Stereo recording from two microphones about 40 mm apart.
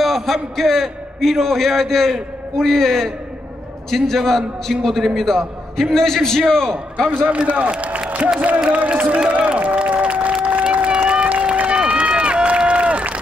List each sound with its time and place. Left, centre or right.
0.0 s a man's voice: centre
7.2 s speech: right
9.3 s a sound: right
11.7 s run: right